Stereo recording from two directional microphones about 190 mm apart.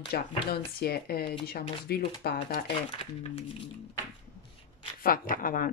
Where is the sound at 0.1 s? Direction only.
55° left (ahead or behind).